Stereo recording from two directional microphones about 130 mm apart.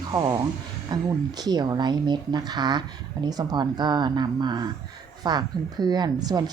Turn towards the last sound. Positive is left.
turn(degrees=-30)  # may be behind; listen again after turning